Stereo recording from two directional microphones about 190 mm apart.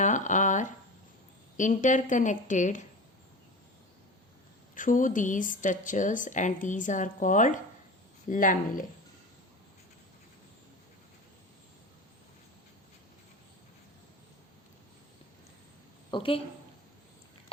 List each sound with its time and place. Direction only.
0.0 s a woman's voice: 40° left (ahead or behind)
4.7 s speech: 45° left (ahead or behind)
16.1 s a woman's voice: 30° left (ahead or behind)